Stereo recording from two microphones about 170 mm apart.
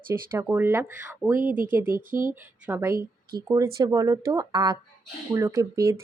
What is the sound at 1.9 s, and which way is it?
Speech, 55° right (ahead or behind).